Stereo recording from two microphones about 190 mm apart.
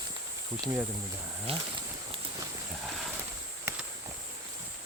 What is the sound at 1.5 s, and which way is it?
Speech, 30° right (ahead or behind).